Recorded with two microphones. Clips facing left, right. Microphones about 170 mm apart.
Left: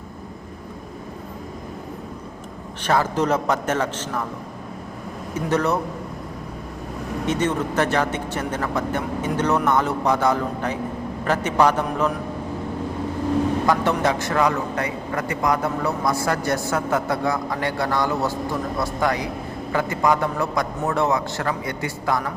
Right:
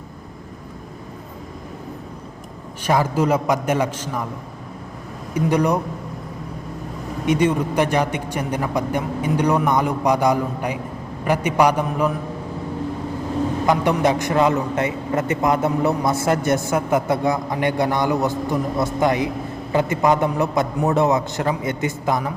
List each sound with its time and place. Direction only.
2.8 s a man's voice: 10° right (ahead or behind)
5.3 s a man's voice: 15° right (ahead or behind)
7.3 s a man's voice: 10° right (ahead or behind)
13.7 s a man's voice: 15° right (ahead or behind)